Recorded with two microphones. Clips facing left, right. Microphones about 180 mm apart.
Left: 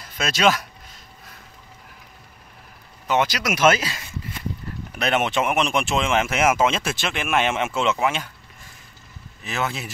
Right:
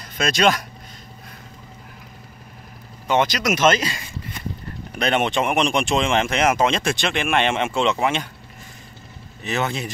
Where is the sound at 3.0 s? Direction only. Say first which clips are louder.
Right 2 dB; 5° left (ahead or behind).